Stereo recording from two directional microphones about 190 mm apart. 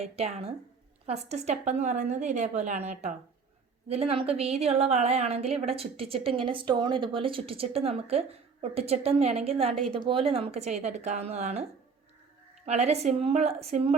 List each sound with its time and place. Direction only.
0.0 s a woman's voice: 30° right (ahead or behind)
12.6 s a woman's voice: 35° right (ahead or behind)